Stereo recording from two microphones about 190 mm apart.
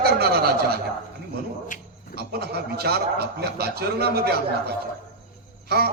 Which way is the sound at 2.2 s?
55° right (ahead or behind).